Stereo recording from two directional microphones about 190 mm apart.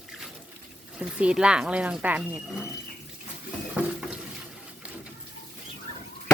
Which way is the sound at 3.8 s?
5° right (ahead or behind).